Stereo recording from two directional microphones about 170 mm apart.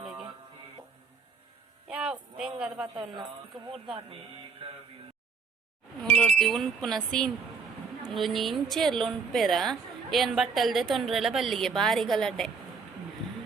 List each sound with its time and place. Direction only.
0.0 s music: centre (ahead or behind)
1.9 s a sound: 5° right (ahead or behind)
2.9 s speech: 25° right (ahead or behind)
3.2 s a woman's voice: centre (ahead or behind)
6.0 s a woman's voice: centre (ahead or behind)